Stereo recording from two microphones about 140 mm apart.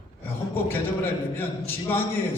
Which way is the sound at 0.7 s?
15° left (ahead or behind).